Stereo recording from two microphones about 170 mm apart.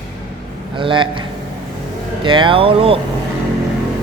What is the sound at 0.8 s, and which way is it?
Speech, 30° right (ahead or behind).